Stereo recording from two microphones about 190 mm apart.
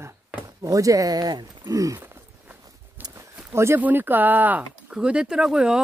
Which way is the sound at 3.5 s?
10° right (ahead or behind).